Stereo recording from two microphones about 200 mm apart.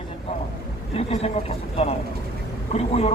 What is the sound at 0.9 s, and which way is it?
A man's voice, 30° left (ahead or behind).